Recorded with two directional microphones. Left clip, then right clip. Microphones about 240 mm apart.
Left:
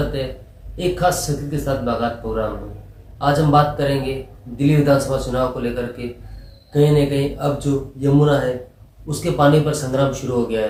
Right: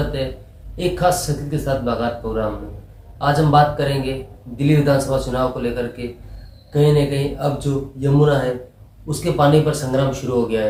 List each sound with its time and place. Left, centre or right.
0.8 s speech: centre